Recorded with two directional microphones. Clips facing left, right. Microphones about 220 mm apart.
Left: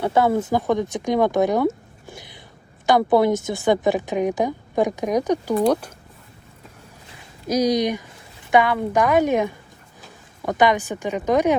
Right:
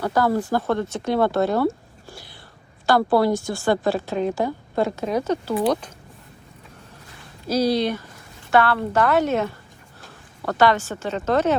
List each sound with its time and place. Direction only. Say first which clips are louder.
0.0 s a woman's voice: left 2 dB; 25° left (ahead or behind)
7.4 s a woman's voice: left 1 dB; 15° left (ahead or behind)